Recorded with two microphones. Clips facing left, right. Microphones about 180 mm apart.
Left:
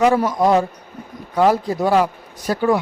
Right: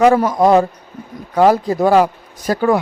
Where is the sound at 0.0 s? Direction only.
50° right (ahead or behind).